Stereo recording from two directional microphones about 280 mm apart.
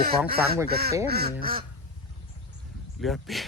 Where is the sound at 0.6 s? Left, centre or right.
Right.